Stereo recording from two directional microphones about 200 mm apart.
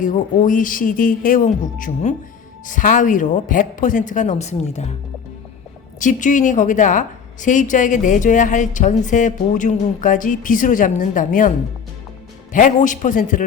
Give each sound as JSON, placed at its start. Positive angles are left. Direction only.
{"t": 0.0, "sound": "a woman's voice", "side_deg": 40}
{"t": 6.0, "sound": "a woman's voice", "side_deg": 40}
{"t": 12.5, "sound": "a woman's voice", "side_deg": 40}